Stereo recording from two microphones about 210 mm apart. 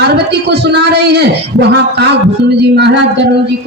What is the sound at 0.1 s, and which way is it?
Speech, 50° right (ahead or behind).